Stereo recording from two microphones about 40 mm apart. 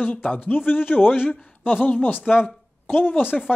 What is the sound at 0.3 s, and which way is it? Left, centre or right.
A man's voice, left.